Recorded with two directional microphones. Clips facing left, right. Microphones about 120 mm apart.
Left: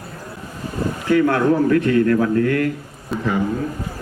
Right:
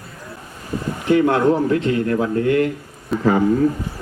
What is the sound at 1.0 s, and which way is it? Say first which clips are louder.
Speech: right 1 dB; 20° right (ahead or behind).